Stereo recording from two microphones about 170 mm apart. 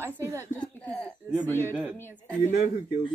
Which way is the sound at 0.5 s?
10° left (ahead or behind).